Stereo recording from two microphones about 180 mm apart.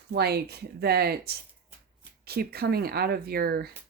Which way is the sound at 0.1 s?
65° right (ahead or behind).